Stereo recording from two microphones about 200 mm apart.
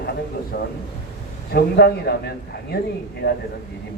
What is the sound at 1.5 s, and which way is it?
Speech, 50° left (ahead or behind).